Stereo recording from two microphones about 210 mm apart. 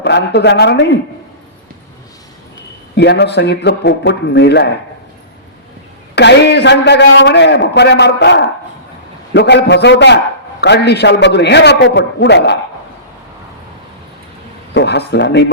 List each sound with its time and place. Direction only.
0.0 s a man's voice: 55° left (ahead or behind)
2.9 s a man's voice: 55° left (ahead or behind)
6.1 s a man's voice: 55° left (ahead or behind)
14.7 s a man's voice: 55° left (ahead or behind)